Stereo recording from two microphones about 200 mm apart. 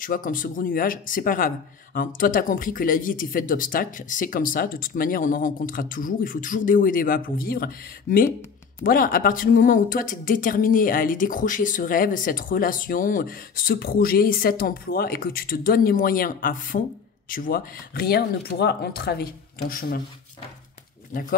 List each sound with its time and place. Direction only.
0.0 s speech: 45° left (ahead or behind)
21.1 s speech: 40° left (ahead or behind)